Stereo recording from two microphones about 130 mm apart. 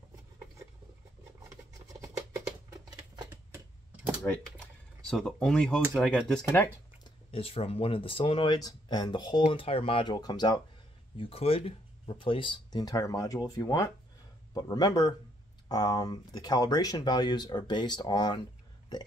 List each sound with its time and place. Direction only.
1.5 s scratch: 25° right (ahead or behind)
5.0 s speech: 5° left (ahead or behind)
7.2 s speech: 50° left (ahead or behind); by 10.6 s 30° left (ahead or behind)
11.1 s speech: 45° left (ahead or behind)